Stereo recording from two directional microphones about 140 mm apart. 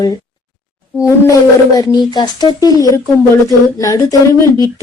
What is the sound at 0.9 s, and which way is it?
A woman's voice, 20° left (ahead or behind).